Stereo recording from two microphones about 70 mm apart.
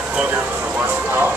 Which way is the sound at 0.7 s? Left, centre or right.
Right.